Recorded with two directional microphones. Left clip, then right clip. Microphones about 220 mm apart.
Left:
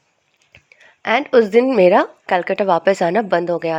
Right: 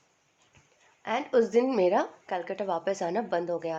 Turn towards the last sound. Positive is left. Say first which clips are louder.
# left 12 dB
turn(degrees=35)  # may be behind; listen again after turning